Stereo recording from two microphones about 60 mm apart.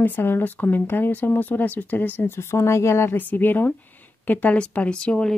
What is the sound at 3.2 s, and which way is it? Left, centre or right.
Speech, left.